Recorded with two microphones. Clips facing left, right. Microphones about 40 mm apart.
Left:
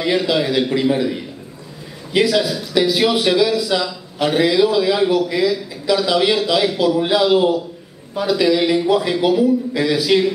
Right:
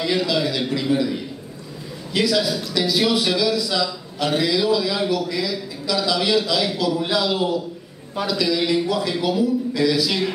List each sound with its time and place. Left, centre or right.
0.0 s speech: left
2.1 s speech: left